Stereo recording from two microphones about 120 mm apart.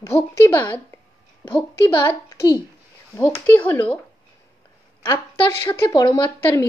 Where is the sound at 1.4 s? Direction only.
45° left (ahead or behind).